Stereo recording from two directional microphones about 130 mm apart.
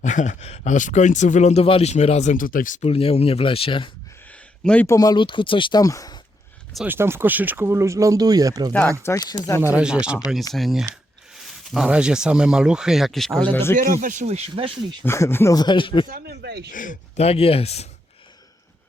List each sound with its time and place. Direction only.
0.0 s speech: 70° left (ahead or behind); by 2.8 s 90° left
2.8 s speech: 50° left (ahead or behind)
4.3 s a sound: 10° left (ahead or behind)
4.9 s speech: 30° left (ahead or behind)
5.8 s speech: 25° left (ahead or behind)
6.8 s speech: 20° right (ahead or behind)
9.0 s speech: 30° left (ahead or behind)
9.6 s speech: 10° right (ahead or behind)
13.5 s speech: 20° left (ahead or behind)
13.7 s speech: 90° right; by 14.7 s 45° right (ahead or behind)
15.0 s speech: 20° left (ahead or behind)
15.5 s speech: 35° left (ahead or behind)
16.7 s speech: 90° left
17.2 s speech: 50° left (ahead or behind)